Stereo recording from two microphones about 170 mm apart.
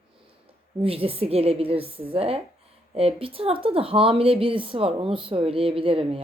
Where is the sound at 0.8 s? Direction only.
35° right (ahead or behind).